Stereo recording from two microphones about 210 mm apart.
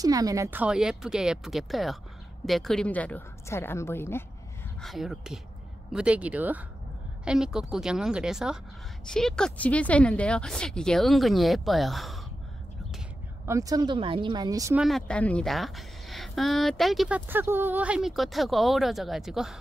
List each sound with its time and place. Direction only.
0.0 s a woman's voice: 15° right (ahead or behind); by 4.2 s 10° left (ahead or behind)
4.8 s a woman's voice: centre (ahead or behind)
13.5 s speech: 15° right (ahead or behind)
14.8 s a woman's voice: centre (ahead or behind)